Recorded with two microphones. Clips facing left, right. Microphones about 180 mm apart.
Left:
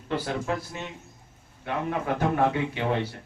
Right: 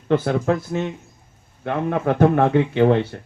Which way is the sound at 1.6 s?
55° right (ahead or behind).